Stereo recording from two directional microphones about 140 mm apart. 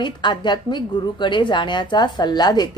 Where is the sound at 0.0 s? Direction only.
35° left (ahead or behind).